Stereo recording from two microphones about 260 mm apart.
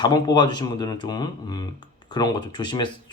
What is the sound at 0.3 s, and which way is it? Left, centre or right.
Speech, centre.